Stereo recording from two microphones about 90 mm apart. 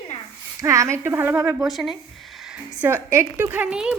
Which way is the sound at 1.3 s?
10° right (ahead or behind).